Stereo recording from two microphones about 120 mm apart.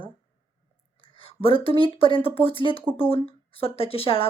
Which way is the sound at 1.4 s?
50° left (ahead or behind).